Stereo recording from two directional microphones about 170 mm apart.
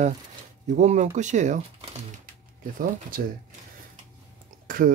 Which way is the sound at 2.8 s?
55° right (ahead or behind).